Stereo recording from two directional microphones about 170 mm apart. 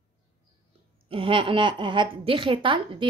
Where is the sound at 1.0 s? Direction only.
30° right (ahead or behind).